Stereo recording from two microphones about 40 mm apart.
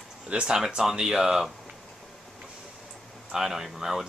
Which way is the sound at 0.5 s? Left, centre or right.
Centre.